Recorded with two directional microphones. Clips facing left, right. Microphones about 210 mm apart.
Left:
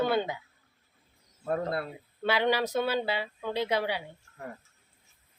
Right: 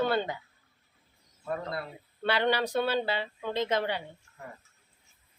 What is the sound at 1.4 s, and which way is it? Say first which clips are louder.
Speech: left 4 dB; 55° left (ahead or behind).